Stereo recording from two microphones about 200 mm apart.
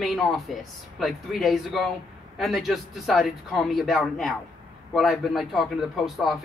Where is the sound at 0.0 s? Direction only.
Centre (ahead or behind).